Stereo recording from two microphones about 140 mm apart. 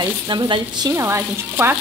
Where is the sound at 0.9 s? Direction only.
20° right (ahead or behind).